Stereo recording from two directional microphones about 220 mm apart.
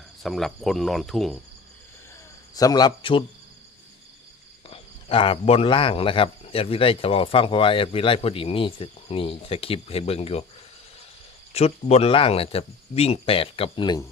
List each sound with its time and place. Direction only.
0.2 s cricket: centre (ahead or behind)
2.6 s a man's voice: 15° left (ahead or behind)
4.7 s speech: 25° left (ahead or behind)
11.5 s speech: 30° left (ahead or behind)